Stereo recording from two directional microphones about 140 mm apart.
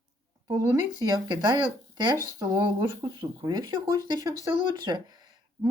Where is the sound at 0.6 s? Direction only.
20° right (ahead or behind).